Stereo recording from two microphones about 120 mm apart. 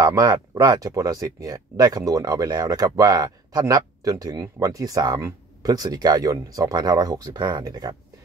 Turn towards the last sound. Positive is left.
turn(degrees=-30)  # may be behind; listen again after turning